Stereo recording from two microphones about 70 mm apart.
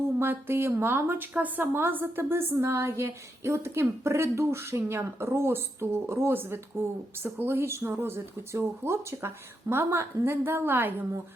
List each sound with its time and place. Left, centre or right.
0.2 s a woman's voice: right